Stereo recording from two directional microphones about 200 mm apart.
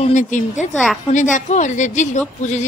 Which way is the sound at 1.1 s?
40° left (ahead or behind).